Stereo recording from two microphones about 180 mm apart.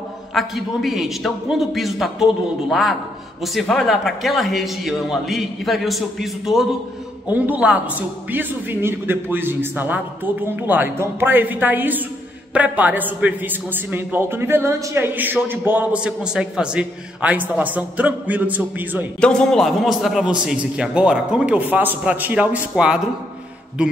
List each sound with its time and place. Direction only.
0.3 s a man's voice: centre (ahead or behind)
19.2 s a man's voice: 5° left (ahead or behind)